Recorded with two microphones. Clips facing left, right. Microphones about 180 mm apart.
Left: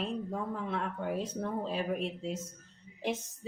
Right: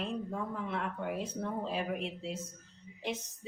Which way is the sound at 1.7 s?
40° left (ahead or behind).